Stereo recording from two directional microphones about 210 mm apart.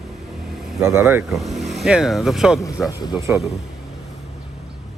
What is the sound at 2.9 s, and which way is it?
Speech, 20° left (ahead or behind).